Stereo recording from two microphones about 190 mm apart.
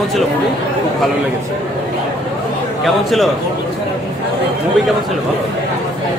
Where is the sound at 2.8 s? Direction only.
Centre (ahead or behind).